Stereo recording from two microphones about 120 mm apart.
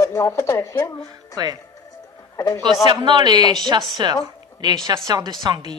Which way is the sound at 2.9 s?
40° right (ahead or behind).